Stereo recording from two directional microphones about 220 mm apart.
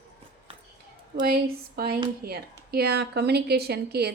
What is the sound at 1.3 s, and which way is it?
Speech, 45° right (ahead or behind).